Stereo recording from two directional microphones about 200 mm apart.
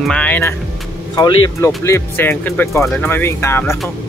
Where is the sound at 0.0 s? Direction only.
5° left (ahead or behind).